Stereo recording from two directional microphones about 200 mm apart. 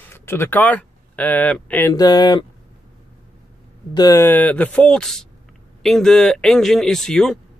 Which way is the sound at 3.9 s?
15° left (ahead or behind).